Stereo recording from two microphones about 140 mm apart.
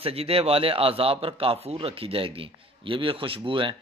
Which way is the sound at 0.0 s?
45° right (ahead or behind).